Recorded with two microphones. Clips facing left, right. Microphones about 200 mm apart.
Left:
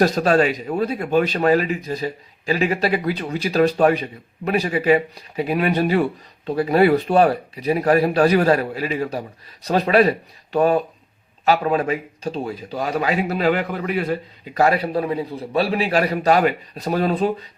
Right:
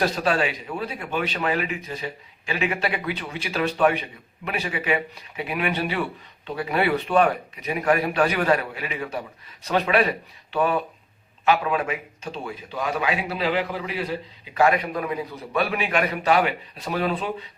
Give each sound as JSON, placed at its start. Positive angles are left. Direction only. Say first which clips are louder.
{"t": 0.0, "sound": "speech", "louder": "left 6 dB", "side_deg": 40}
{"t": 14.6, "sound": "speech", "louder": "left 3 dB", "side_deg": 35}